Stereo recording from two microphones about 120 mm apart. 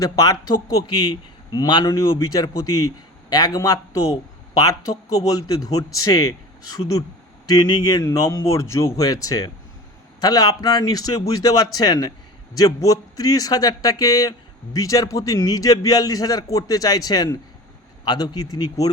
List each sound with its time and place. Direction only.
0.0 s a man's voice: 30° left (ahead or behind)
7.4 s a man's voice: 35° left (ahead or behind)